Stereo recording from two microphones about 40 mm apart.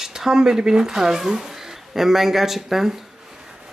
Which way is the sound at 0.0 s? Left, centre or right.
Centre.